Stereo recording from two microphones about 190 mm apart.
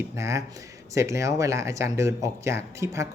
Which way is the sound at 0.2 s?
15° right (ahead or behind).